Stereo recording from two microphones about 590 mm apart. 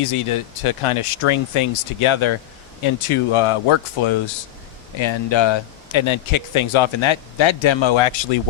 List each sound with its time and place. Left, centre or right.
0.0 s speech: left